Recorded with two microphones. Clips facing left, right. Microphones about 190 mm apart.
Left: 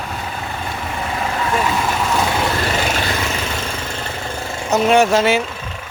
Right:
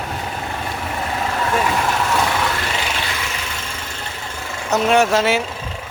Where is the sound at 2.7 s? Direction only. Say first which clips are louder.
Left 5 dB; 45° left (ahead or behind).